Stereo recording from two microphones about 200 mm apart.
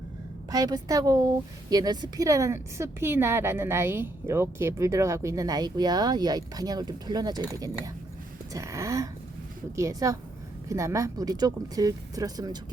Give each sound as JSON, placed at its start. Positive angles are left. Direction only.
{"t": 0.5, "sound": "speech", "side_deg": -20}